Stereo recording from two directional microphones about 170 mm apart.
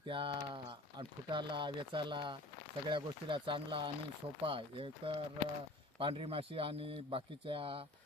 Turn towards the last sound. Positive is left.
turn(degrees=-35)  # may be behind; listen again after turning